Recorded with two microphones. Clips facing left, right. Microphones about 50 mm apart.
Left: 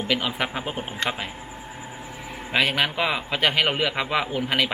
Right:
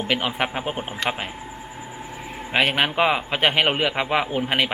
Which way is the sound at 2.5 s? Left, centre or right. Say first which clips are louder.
Right 2 dB; right.